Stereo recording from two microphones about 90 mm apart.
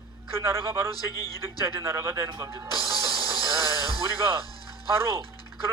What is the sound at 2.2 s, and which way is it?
Speech, 40° right (ahead or behind).